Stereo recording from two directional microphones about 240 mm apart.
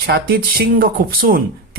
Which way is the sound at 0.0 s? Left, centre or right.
Right.